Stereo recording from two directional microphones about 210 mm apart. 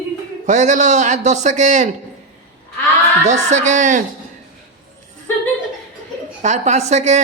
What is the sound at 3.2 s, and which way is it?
Speech, 35° right (ahead or behind).